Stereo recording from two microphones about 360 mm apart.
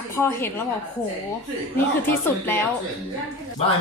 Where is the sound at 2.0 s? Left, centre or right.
Centre.